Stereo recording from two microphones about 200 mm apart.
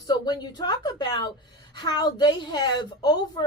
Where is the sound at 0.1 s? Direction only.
20° left (ahead or behind).